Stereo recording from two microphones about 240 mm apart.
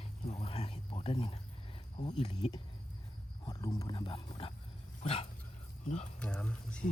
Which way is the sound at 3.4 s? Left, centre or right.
Centre.